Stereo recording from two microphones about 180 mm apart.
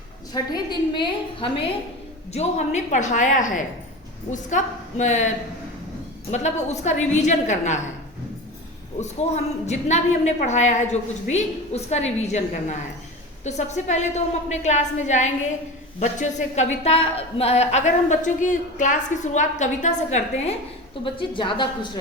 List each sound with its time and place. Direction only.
0.5 s a woman's voice: 25° left (ahead or behind)
2.3 s a woman's voice: 40° left (ahead or behind)
6.3 s a woman's voice: 40° left (ahead or behind)
9.0 s a woman's voice: 40° left (ahead or behind)